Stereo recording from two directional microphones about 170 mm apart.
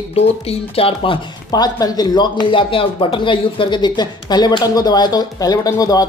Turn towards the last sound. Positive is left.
turn(degrees=20)  # may be behind; listen again after turning